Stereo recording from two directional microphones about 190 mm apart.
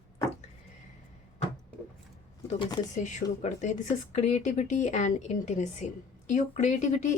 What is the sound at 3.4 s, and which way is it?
Speech, 40° left (ahead or behind).